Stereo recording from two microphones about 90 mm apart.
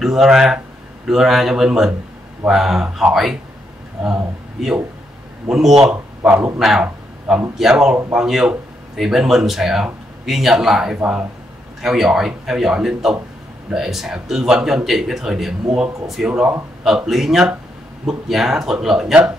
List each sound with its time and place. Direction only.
0.0 s speech: 5° right (ahead or behind)
6.3 s a man's voice: 30° right (ahead or behind)
6.6 s a man's voice: 5° right (ahead or behind)